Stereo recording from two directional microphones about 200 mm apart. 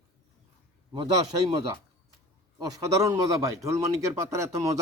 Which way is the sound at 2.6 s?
15° right (ahead or behind).